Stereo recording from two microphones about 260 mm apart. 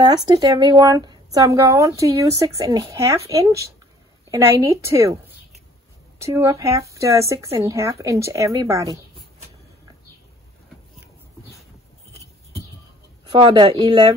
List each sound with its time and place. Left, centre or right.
0.0 s speech: centre
6.2 s speech: centre
13.2 s speech: centre